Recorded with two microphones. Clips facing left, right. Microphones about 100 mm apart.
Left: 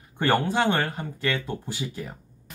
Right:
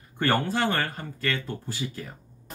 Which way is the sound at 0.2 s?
20° left (ahead or behind).